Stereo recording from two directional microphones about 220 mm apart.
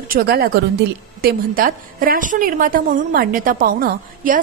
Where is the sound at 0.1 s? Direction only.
45° right (ahead or behind).